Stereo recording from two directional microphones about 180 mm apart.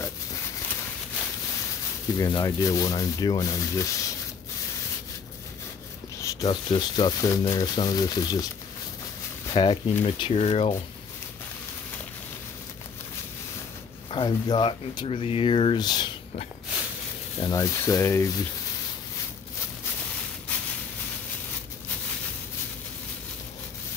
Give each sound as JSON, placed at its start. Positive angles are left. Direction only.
{"t": 2.1, "sound": "speech", "side_deg": 20}
{"t": 6.4, "sound": "speech", "side_deg": 30}
{"t": 9.5, "sound": "speech", "side_deg": 30}
{"t": 14.1, "sound": "speech", "side_deg": 25}
{"t": 17.4, "sound": "speech", "side_deg": 20}